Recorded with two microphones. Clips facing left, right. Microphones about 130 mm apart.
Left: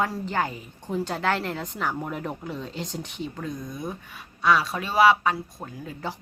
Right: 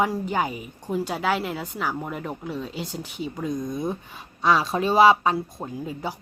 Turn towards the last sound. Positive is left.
turn(degrees=-20)  # may be behind; listen again after turning